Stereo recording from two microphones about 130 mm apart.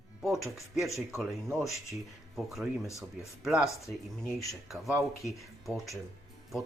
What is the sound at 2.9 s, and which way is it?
Speech, 25° left (ahead or behind).